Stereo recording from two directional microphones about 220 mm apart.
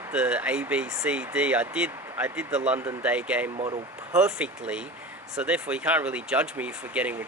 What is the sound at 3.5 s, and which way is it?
Speech, 25° right (ahead or behind).